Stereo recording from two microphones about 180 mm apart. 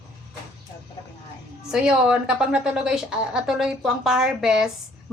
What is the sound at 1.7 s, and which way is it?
A woman's voice, 5° right (ahead or behind).